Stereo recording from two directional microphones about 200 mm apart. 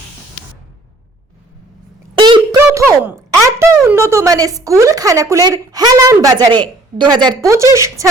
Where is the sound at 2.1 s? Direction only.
25° right (ahead or behind).